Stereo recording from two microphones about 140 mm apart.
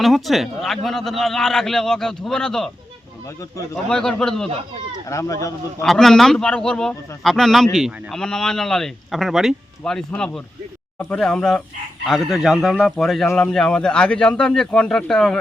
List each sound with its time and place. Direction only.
0.0 s a man's voice: centre (ahead or behind)
3.8 s a man's voice: 5° left (ahead or behind)
5.0 s speech: 20° left (ahead or behind)
5.8 s a man's voice: centre (ahead or behind)